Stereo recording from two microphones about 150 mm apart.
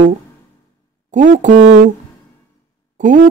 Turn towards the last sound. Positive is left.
turn(degrees=-55)  # may be behind; listen again after turning